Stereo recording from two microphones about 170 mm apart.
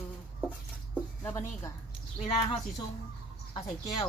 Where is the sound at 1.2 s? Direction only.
15° left (ahead or behind).